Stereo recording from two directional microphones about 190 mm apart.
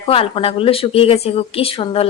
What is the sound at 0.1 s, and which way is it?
Speech, 30° left (ahead or behind).